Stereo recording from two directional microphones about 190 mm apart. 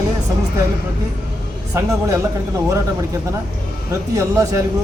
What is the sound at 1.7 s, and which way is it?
Speech, 15° right (ahead or behind).